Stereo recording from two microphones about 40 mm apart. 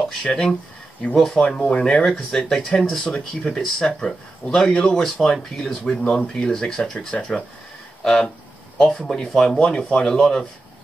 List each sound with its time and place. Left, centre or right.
0.2 s speech: centre
1.1 s speech: centre
1.7 s speech: left
5.0 s speech: centre
9.8 s speech: left